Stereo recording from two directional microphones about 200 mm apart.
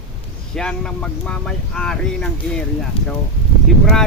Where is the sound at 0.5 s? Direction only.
5° left (ahead or behind).